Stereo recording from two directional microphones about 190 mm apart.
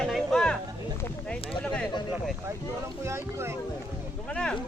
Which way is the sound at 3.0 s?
15° right (ahead or behind).